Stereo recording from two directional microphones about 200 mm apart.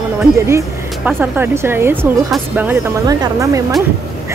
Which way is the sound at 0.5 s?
10° right (ahead or behind).